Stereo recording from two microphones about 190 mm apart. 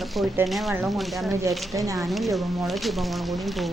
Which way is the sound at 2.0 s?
Centre (ahead or behind).